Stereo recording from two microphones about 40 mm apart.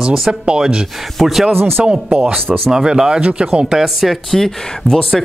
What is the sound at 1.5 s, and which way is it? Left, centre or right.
Speech, right.